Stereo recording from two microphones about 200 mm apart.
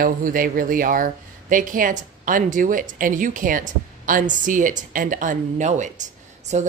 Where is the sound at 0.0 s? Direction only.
45° right (ahead or behind).